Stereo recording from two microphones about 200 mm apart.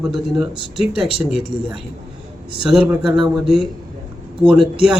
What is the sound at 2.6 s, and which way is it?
A man's voice, 5° right (ahead or behind).